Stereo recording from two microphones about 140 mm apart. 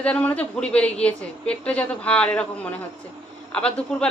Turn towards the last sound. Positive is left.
turn(degrees=5)  # may be behind; listen again after turning